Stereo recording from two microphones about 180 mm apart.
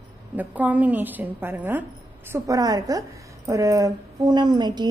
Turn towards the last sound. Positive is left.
turn(degrees=-25)  # may be behind; listen again after turning